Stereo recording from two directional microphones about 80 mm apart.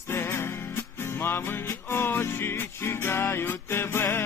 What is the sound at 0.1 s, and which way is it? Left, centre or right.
Music, left.